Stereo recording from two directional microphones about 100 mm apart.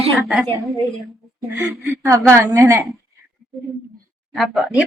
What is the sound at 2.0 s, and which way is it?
Speech, 30° right (ahead or behind).